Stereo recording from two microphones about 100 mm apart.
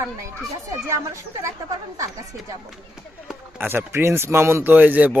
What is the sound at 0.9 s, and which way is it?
Speech, 30° right (ahead or behind).